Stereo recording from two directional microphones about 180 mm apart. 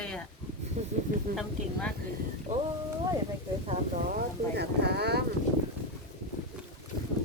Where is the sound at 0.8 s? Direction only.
40° right (ahead or behind).